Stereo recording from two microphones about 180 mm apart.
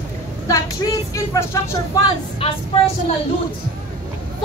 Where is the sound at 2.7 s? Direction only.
35° left (ahead or behind).